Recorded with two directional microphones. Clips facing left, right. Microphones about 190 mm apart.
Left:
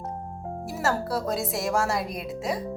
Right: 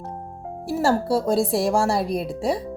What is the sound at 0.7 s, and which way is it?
A woman's voice, 30° right (ahead or behind).